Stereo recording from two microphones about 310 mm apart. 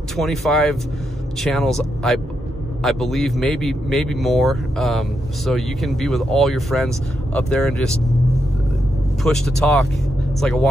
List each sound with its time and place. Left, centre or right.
0.1 s a man's voice: centre
9.2 s a man's voice: centre